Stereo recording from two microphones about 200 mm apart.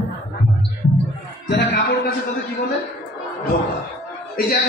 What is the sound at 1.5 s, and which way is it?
Music, 55° left (ahead or behind).